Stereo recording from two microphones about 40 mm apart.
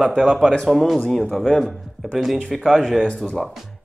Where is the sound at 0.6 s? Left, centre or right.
Centre.